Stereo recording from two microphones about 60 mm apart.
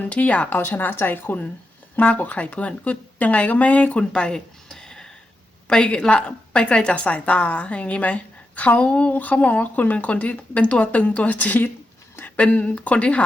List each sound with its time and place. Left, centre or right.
0.0 s a woman's voice: left
0.7 s a woman's voice: left